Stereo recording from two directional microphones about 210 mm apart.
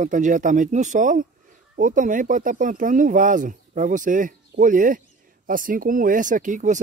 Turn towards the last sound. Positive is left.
turn(degrees=-35)  # may be behind; listen again after turning